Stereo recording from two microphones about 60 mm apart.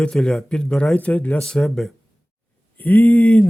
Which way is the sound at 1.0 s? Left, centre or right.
Left.